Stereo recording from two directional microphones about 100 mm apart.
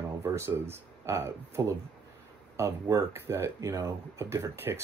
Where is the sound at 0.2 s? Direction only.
25° right (ahead or behind).